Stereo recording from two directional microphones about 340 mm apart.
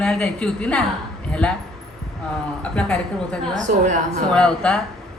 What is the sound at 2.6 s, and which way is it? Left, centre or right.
Speech, centre.